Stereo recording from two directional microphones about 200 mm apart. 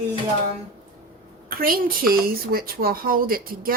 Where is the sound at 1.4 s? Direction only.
45° right (ahead or behind).